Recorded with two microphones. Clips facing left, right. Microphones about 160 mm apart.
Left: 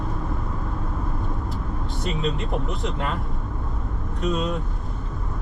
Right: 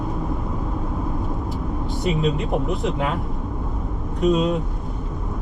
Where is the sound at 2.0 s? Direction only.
5° right (ahead or behind).